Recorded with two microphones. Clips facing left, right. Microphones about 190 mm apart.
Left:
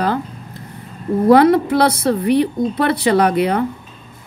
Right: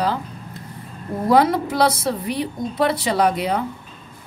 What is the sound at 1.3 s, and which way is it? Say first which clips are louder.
Speech: left 6 dB; 60° left (ahead or behind).